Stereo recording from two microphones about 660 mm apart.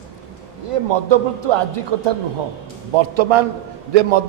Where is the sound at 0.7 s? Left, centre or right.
Right.